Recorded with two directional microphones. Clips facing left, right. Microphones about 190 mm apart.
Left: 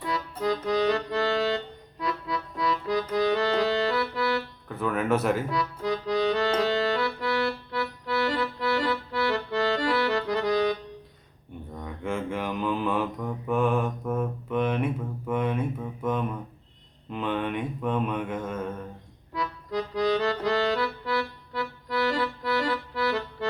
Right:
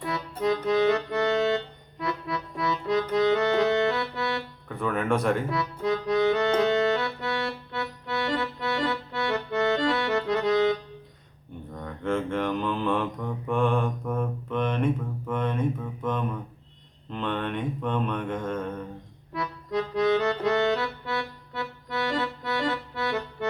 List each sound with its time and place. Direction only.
0.0 s accordion: 25° right (ahead or behind)
4.7 s speech: centre (ahead or behind)
5.5 s accordion: 25° right (ahead or behind)
11.8 s mantra: 10° left (ahead or behind)
19.3 s accordion: 25° right (ahead or behind)